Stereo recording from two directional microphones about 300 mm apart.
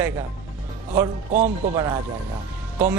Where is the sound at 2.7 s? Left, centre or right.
Centre.